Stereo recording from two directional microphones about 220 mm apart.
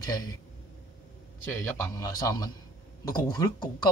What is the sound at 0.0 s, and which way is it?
Speech, 15° left (ahead or behind).